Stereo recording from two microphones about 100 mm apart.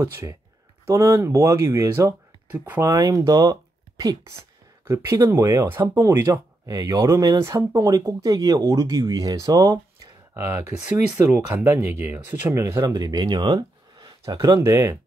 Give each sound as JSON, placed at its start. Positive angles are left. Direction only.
{"t": 0.0, "sound": "speech", "side_deg": -25}
{"t": 2.9, "sound": "speech", "side_deg": -40}
{"t": 4.8, "sound": "speech", "side_deg": -30}
{"t": 10.3, "sound": "speech", "side_deg": -25}
{"t": 12.8, "sound": "speech", "side_deg": -45}
{"t": 14.6, "sound": "speech", "side_deg": -30}